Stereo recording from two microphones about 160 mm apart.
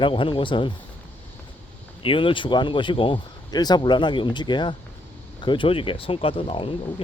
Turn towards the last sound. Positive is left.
turn(degrees=35)  # may be behind; listen again after turning